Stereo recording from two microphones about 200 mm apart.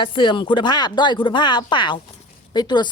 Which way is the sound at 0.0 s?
25° left (ahead or behind).